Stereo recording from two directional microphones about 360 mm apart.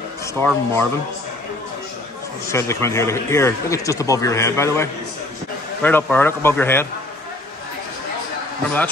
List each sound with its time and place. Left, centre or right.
0.4 s a man's voice: centre
2.5 s a man's voice: centre